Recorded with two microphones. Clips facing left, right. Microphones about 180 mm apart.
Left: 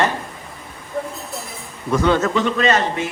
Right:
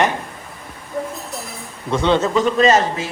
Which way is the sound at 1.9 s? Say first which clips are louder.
Even; 25° right (ahead or behind).